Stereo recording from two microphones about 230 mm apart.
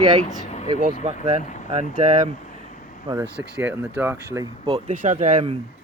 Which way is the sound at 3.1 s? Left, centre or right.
Centre.